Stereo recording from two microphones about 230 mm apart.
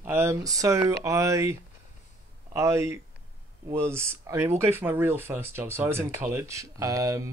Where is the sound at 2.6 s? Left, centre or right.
Centre.